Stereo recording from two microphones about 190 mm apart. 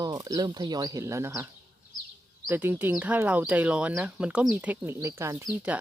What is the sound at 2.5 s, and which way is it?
Speech, 10° right (ahead or behind).